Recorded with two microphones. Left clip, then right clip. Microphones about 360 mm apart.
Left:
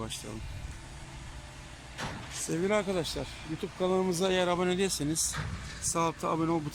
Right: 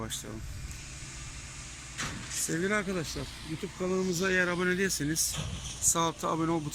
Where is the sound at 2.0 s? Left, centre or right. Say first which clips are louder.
Right 1 dB; left.